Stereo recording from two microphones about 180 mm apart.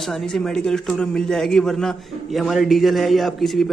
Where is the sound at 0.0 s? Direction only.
Centre (ahead or behind).